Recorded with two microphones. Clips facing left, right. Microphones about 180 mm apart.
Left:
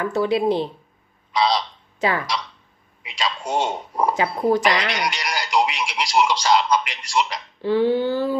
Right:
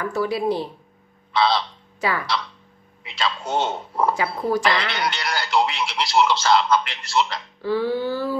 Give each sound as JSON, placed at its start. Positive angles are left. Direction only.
{"t": 0.0, "sound": "speech", "side_deg": 25}
{"t": 1.3, "sound": "a sound", "side_deg": 15}
{"t": 3.1, "sound": "speech", "side_deg": 10}
{"t": 4.6, "sound": "speech", "side_deg": 10}